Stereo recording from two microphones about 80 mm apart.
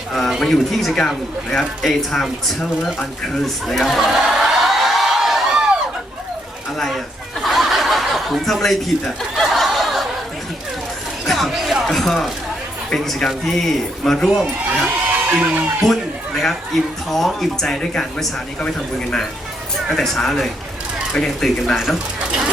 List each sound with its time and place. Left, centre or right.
0.1 s speech: centre
6.7 s a sound: centre
7.4 s chuckle: centre
11.3 s a sound: centre
12.9 s a man's voice: centre
15.3 s speech: centre
15.8 s a man's voice: centre